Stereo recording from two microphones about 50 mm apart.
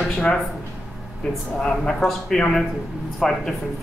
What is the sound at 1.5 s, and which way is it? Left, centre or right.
Speech, centre.